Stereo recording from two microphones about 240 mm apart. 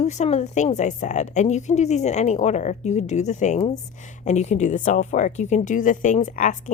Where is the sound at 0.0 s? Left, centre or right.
Left.